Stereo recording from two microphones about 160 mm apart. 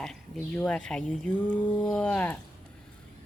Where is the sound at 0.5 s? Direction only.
5° left (ahead or behind).